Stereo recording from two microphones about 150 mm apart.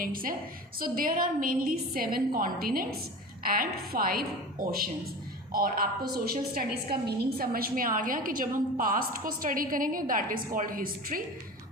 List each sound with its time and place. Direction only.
0.0 s a woman's voice: 70° right (ahead or behind)